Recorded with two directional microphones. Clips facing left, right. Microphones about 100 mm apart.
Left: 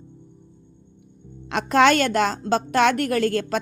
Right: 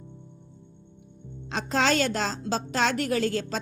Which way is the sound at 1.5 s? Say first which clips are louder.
Left 8 dB; 65° left (ahead or behind).